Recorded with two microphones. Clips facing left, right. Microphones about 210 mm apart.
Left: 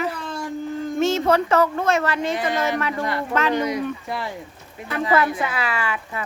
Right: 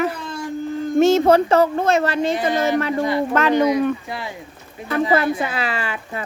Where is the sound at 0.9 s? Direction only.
35° right (ahead or behind).